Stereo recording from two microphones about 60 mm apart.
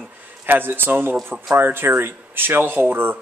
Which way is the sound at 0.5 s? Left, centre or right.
Right.